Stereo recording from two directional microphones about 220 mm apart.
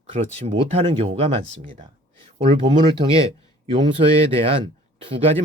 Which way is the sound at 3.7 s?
25° right (ahead or behind).